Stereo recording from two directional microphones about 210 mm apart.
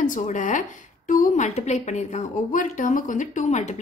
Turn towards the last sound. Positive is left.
turn(degrees=35)  # may be behind; listen again after turning